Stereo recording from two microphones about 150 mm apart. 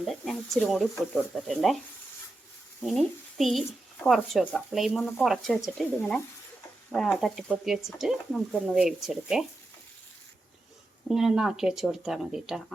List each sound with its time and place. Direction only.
0.0 s speech: centre (ahead or behind)
2.8 s speech: centre (ahead or behind)
11.1 s speech: 5° right (ahead or behind)